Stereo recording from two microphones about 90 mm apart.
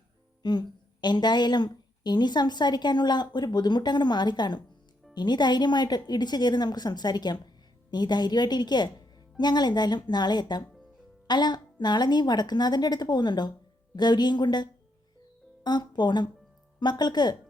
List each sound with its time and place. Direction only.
0.4 s a woman's voice: 55° left (ahead or behind)